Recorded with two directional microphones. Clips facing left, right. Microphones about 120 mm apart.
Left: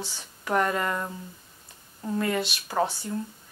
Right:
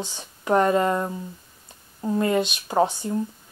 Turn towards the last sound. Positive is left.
turn(degrees=-20)  # may be behind; listen again after turning